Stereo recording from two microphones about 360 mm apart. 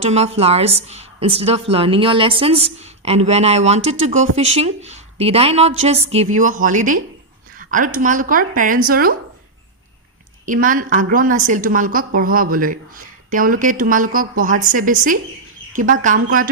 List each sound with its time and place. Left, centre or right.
0.0 s a woman's voice: centre
10.4 s a woman's voice: right